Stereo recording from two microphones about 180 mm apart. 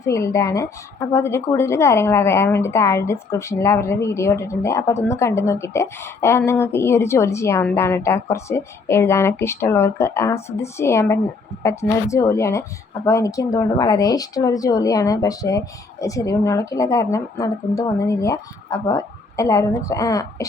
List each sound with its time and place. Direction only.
0.0 s a woman's voice: 15° left (ahead or behind)